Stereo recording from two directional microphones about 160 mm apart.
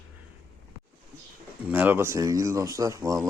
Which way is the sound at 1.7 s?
10° right (ahead or behind).